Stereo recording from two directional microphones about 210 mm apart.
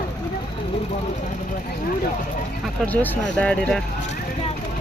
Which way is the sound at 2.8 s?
10° left (ahead or behind).